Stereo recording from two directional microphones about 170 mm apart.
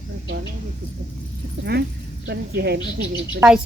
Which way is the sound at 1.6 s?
70° right (ahead or behind).